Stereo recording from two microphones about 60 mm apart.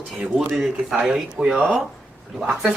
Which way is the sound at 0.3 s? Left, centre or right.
Centre.